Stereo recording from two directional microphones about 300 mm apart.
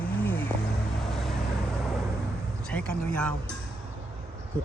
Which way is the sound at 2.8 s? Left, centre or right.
Right.